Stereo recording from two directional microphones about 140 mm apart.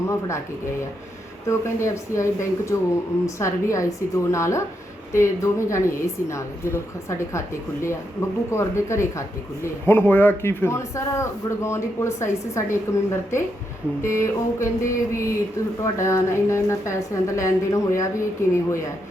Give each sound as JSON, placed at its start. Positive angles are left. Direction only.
{"t": 0.1, "sound": "a man's voice", "side_deg": 20}